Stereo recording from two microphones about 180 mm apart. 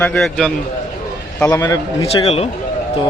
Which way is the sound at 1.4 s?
20° left (ahead or behind).